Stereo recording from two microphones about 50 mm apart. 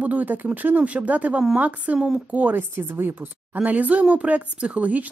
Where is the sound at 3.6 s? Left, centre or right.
Right.